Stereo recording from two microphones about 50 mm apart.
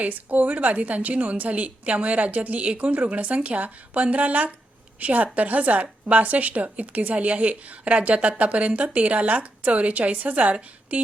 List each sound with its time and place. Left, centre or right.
0.0 s a woman's voice: right